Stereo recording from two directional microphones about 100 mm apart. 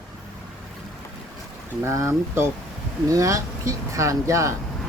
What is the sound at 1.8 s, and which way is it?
Speech, 30° right (ahead or behind).